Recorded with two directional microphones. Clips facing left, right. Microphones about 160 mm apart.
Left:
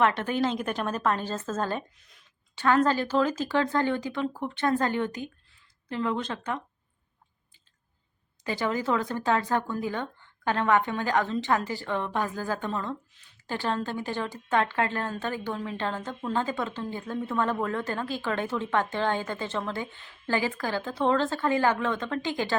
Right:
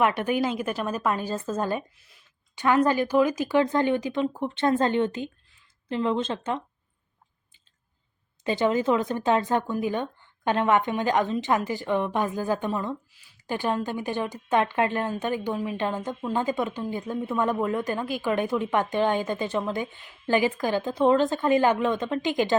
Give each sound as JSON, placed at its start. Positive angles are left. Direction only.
{"t": 0.0, "sound": "speech", "side_deg": -10}
{"t": 8.4, "sound": "speech", "side_deg": -20}